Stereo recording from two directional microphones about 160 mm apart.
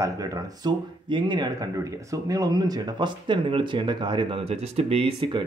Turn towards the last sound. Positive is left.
turn(degrees=-35)  # may be behind; listen again after turning